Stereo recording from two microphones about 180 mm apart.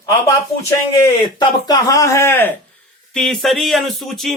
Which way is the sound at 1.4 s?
20° left (ahead or behind).